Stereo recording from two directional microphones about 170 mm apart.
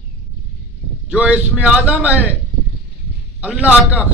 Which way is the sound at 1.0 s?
5° right (ahead or behind).